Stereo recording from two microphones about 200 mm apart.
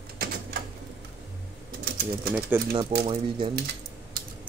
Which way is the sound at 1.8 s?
50° right (ahead or behind).